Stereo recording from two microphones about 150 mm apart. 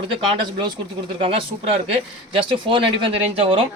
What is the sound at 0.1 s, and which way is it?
Speech, 35° right (ahead or behind).